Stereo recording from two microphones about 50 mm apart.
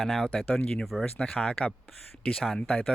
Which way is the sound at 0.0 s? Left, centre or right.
Centre.